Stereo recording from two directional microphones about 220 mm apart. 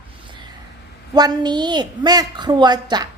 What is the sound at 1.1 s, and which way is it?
A woman's voice, 20° right (ahead or behind).